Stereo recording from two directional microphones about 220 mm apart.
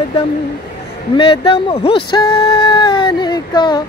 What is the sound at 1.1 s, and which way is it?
Speech, 25° left (ahead or behind).